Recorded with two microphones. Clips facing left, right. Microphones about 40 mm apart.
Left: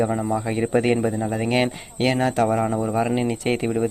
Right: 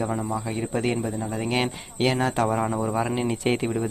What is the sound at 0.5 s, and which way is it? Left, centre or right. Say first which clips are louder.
Speech: left 7 dB; left.